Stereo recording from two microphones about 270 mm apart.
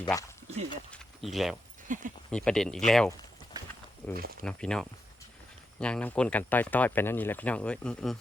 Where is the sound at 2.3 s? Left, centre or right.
Centre.